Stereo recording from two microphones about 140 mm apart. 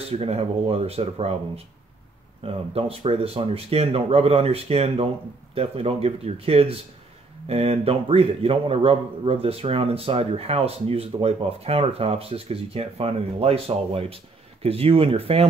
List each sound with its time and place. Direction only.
0.1 s a man's voice: 45° right (ahead or behind)
2.4 s a man's voice: 40° right (ahead or behind)